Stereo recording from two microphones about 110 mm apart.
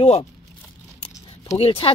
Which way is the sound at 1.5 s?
60° left (ahead or behind).